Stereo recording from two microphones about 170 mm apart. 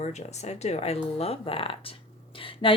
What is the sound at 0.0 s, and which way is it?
Speech, 40° left (ahead or behind).